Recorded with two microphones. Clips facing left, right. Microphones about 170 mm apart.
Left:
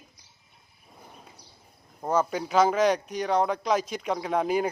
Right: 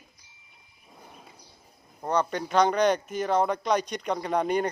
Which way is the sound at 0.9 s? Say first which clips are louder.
Even; centre (ahead or behind).